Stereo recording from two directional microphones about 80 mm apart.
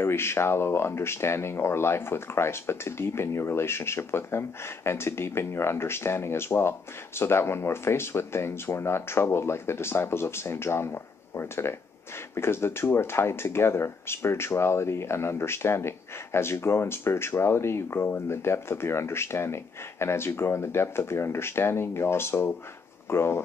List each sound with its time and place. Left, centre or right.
0.0 s speech: left